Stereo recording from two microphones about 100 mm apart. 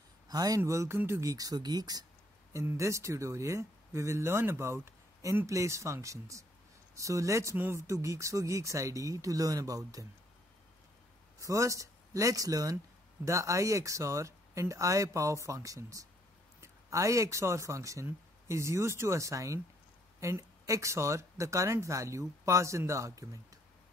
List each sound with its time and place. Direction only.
0.3 s speech: 40° right (ahead or behind)
2.5 s speech: 30° right (ahead or behind)
11.3 s speech: 30° right (ahead or behind)